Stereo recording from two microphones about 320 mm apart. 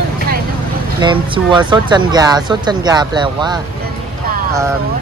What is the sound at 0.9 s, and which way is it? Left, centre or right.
Speech, centre.